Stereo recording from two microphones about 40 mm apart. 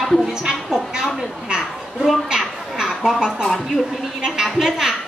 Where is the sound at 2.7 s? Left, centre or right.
Centre.